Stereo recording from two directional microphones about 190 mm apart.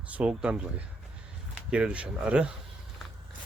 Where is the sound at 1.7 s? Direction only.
5° right (ahead or behind).